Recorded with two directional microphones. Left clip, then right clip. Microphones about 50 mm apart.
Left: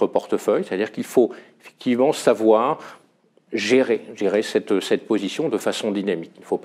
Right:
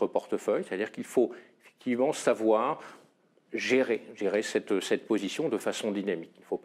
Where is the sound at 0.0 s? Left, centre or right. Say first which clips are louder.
Left 9 dB; left.